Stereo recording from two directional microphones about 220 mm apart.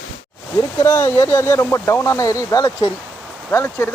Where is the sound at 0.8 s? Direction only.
10° left (ahead or behind).